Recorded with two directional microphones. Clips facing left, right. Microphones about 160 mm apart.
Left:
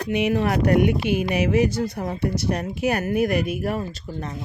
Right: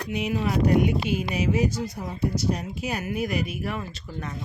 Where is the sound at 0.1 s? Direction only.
65° left (ahead or behind); by 4.0 s 40° left (ahead or behind).